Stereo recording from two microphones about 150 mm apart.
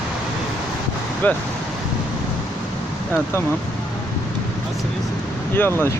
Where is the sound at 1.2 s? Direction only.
10° left (ahead or behind).